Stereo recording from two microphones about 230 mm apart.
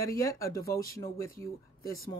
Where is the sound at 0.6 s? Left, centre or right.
Left.